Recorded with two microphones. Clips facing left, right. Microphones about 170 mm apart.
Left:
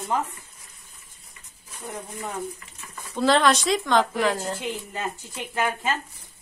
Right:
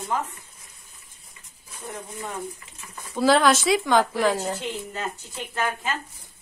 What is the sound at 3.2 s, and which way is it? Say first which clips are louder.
Speech: right 1 dB; 5° right (ahead or behind).